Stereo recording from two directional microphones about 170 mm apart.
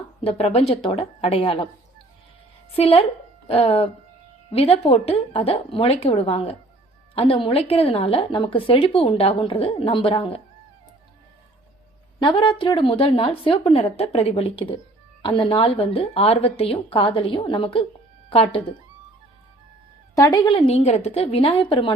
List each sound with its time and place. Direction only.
0.3 s speech: 35° left (ahead or behind)
2.7 s speech: 35° left (ahead or behind)
12.2 s speech: 30° left (ahead or behind)
20.1 s speech: 20° left (ahead or behind)